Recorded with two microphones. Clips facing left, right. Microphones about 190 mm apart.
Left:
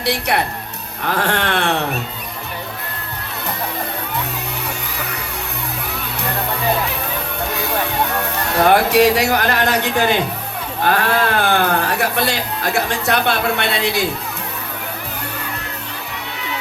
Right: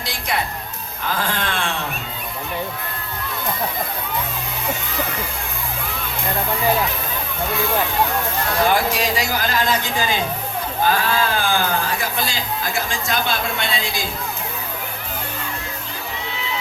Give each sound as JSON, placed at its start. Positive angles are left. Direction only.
{"t": 0.0, "sound": "music", "side_deg": 70}
{"t": 1.0, "sound": "a man's voice", "side_deg": 70}
{"t": 8.2, "sound": "a man's voice", "side_deg": 70}